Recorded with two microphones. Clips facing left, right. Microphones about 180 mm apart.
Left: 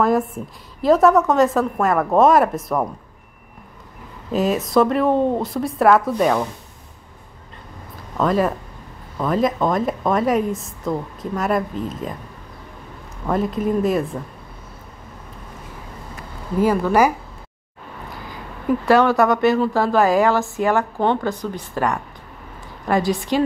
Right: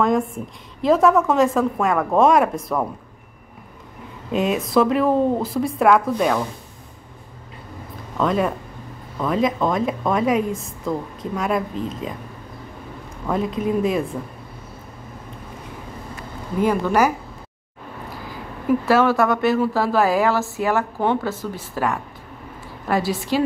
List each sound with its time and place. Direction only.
0.8 s speech: centre (ahead or behind)
4.3 s speech: centre (ahead or behind)
8.2 s speech: centre (ahead or behind)
13.3 s speech: centre (ahead or behind)
16.6 s speech: 10° left (ahead or behind)
18.9 s speech: centre (ahead or behind)